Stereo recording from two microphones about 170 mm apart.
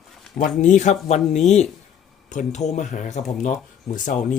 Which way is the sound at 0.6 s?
45° left (ahead or behind).